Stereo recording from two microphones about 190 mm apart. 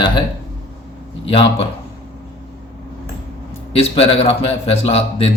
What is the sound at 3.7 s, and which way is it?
A man's voice, 30° left (ahead or behind).